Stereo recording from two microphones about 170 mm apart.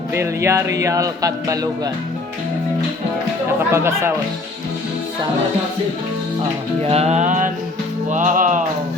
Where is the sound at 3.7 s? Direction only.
15° right (ahead or behind).